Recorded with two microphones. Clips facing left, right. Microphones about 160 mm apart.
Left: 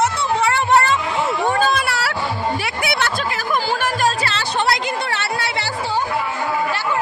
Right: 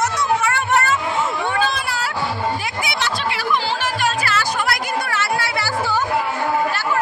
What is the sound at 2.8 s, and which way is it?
Music, 55° left (ahead or behind).